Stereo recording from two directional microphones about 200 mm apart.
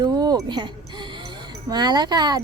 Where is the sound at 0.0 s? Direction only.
20° right (ahead or behind).